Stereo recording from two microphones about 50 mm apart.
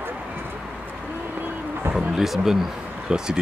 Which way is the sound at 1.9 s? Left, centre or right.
Centre.